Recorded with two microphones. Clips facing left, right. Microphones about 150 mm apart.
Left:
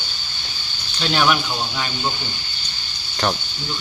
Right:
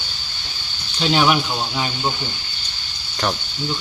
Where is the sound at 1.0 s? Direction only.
20° right (ahead or behind).